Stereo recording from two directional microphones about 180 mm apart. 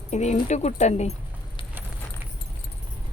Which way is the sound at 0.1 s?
40° left (ahead or behind).